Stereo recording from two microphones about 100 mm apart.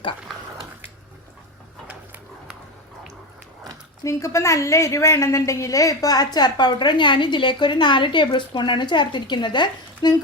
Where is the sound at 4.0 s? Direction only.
30° left (ahead or behind).